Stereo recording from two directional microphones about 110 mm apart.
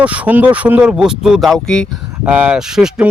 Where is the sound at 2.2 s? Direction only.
10° right (ahead or behind).